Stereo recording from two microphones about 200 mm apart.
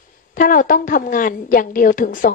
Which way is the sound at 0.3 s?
45° left (ahead or behind).